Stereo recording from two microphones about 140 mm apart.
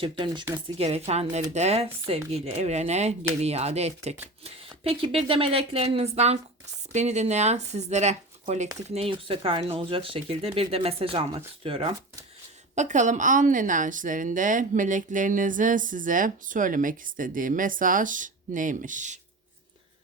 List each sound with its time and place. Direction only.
0.0 s speech: 35° right (ahead or behind)
0.8 s speech: 50° right (ahead or behind)
9.0 s speech: 40° right (ahead or behind)
12.7 s a woman's voice: 60° right (ahead or behind)